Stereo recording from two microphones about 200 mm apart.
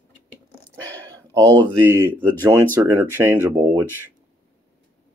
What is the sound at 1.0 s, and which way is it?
Speech, 15° right (ahead or behind).